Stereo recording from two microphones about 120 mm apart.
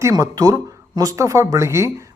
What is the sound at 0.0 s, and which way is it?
Speech, 30° right (ahead or behind).